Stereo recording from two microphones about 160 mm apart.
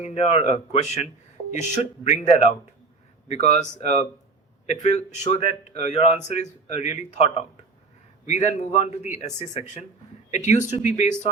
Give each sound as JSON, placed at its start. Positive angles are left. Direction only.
{"t": 0.0, "sound": "a man's voice", "side_deg": 45}